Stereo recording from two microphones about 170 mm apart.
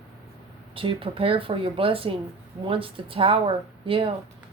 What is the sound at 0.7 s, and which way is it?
Speech, 30° right (ahead or behind).